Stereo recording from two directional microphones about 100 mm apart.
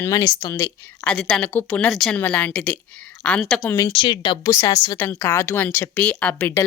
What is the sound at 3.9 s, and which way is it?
Speech, 55° left (ahead or behind).